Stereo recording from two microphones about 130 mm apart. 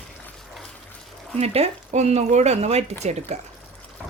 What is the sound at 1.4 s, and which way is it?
Speech, 55° right (ahead or behind).